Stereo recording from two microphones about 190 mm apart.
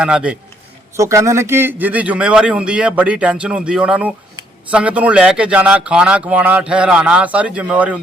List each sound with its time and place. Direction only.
0.0 s a man's voice: 5° right (ahead or behind)
0.9 s a man's voice: 15° right (ahead or behind)